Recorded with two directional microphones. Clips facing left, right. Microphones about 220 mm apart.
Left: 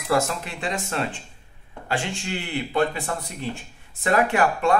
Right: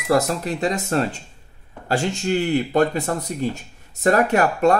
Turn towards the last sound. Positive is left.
turn(degrees=-40)  # may be behind; listen again after turning